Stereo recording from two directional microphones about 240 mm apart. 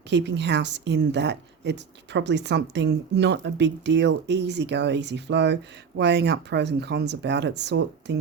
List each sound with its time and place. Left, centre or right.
0.1 s a woman's voice: right